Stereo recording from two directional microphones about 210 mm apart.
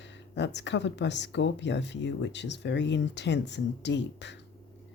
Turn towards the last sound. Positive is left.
turn(degrees=55)  # may be behind; listen again after turning